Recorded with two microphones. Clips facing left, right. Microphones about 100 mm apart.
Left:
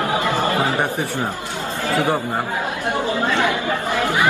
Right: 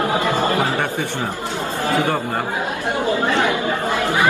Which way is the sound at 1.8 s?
20° right (ahead or behind).